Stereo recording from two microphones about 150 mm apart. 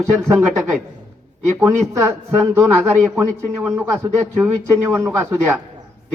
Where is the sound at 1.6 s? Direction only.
15° right (ahead or behind).